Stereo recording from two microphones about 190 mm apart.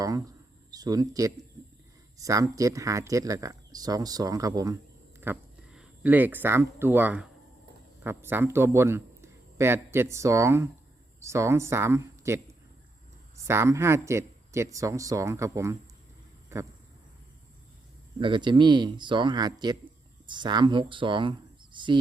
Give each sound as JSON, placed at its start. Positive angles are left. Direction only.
{"t": 0.0, "sound": "a sound", "side_deg": -20}
{"t": 2.1, "sound": "speech", "side_deg": -20}
{"t": 5.2, "sound": "a man's voice", "side_deg": -10}
{"t": 13.5, "sound": "speech", "side_deg": -15}
{"t": 16.5, "sound": "a sound", "side_deg": -15}
{"t": 18.2, "sound": "speech", "side_deg": -25}